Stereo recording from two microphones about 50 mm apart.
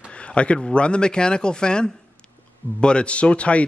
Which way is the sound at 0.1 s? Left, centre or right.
Left.